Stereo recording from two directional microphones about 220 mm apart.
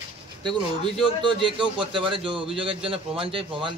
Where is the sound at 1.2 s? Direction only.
20° right (ahead or behind).